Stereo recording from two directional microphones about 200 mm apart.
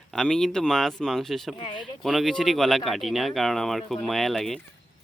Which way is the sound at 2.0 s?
Centre (ahead or behind).